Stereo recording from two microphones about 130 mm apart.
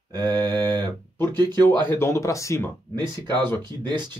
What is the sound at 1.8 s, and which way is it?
Speech, 15° left (ahead or behind).